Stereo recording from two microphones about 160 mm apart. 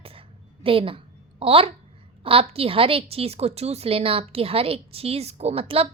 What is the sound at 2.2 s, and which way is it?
A woman's voice, 35° right (ahead or behind).